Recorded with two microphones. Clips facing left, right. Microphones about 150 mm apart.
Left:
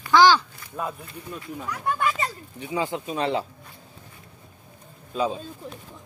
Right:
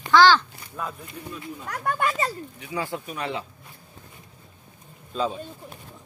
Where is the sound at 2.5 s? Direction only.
20° left (ahead or behind).